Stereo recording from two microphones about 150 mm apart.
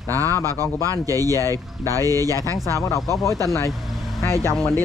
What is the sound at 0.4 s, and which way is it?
Speech, 25° right (ahead or behind).